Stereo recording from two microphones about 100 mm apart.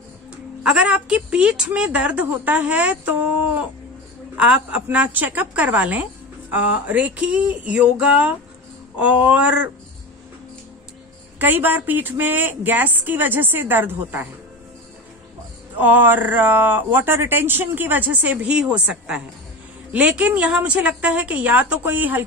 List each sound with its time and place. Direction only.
0.7 s a woman's voice: 10° right (ahead or behind)
11.3 s speech: 20° right (ahead or behind)
15.8 s a woman's voice: 15° right (ahead or behind)